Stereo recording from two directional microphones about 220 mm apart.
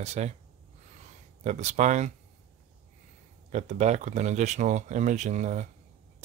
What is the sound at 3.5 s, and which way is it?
Speech, 30° right (ahead or behind).